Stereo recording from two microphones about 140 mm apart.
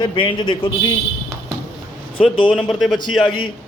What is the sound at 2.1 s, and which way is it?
A man's voice, 40° left (ahead or behind).